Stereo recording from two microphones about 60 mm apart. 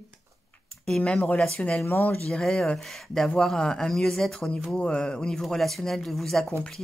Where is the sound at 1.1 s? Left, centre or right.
Left.